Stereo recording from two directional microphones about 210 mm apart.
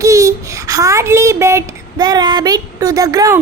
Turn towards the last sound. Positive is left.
turn(degrees=-15)  # may be behind; listen again after turning